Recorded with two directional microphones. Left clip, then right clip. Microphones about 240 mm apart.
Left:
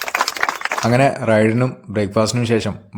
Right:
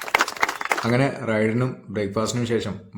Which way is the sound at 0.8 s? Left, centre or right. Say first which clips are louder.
Left 12 dB; left.